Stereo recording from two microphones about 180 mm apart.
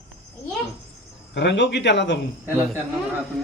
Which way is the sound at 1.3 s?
75° left (ahead or behind).